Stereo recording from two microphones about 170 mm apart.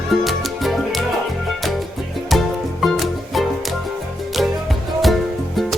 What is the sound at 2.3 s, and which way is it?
Music, centre (ahead or behind).